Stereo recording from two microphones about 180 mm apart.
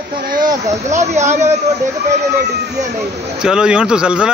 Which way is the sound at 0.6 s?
40° right (ahead or behind).